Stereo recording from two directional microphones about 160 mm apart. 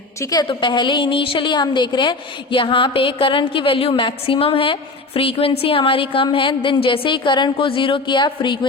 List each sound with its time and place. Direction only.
0.2 s a woman's voice: 25° left (ahead or behind)